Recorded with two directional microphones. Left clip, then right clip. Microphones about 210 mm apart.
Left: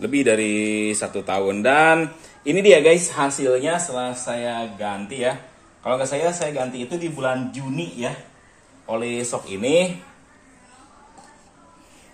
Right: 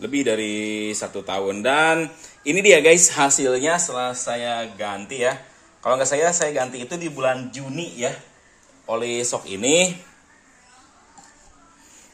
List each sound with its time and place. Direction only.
0.0 s a man's voice: 5° right (ahead or behind); by 9.8 s 40° right (ahead or behind)